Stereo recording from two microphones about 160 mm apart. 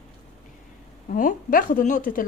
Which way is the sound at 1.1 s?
60° left (ahead or behind).